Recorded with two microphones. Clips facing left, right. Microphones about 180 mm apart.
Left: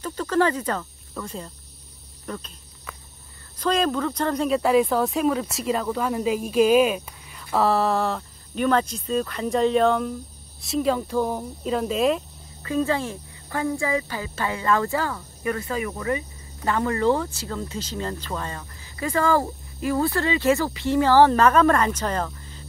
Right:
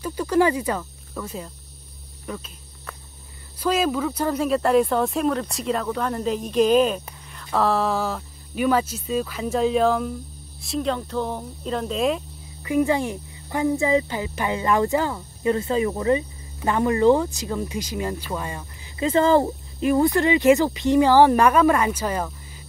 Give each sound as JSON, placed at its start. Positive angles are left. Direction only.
{"t": 0.0, "sound": "speech", "side_deg": -10}
{"t": 2.2, "sound": "cricket", "side_deg": -5}
{"t": 3.5, "sound": "speech", "side_deg": -10}
{"t": 12.6, "sound": "speech", "side_deg": -15}